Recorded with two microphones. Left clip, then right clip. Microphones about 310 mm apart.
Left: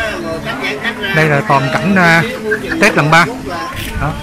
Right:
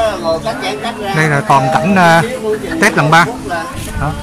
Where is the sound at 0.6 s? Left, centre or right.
Centre.